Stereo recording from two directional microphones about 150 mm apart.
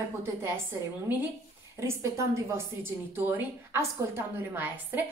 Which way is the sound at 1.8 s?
20° right (ahead or behind).